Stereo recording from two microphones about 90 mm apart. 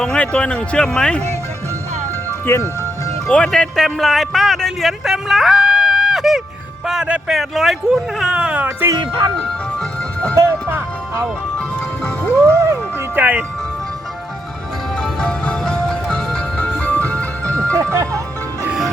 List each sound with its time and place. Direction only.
0.0 s speech: 10° left (ahead or behind)
3.2 s speech: 10° left (ahead or behind); by 8.9 s 20° right (ahead or behind)
10.3 s speech: 30° right (ahead or behind)
12.0 s speech: 10° left (ahead or behind)
12.7 s music: 20° right (ahead or behind)
14.9 s music: 5° left (ahead or behind)
17.9 s speech: 35° right (ahead or behind)